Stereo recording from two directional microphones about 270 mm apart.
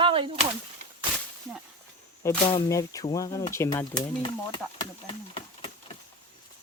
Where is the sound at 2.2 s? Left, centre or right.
Centre.